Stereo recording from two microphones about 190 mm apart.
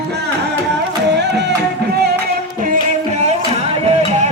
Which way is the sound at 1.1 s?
65° right (ahead or behind).